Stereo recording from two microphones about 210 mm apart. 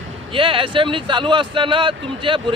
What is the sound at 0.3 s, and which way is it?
Speech, 25° right (ahead or behind).